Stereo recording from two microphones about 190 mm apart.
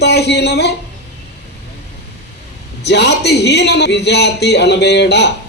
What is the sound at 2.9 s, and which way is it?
A man's voice, 60° left (ahead or behind).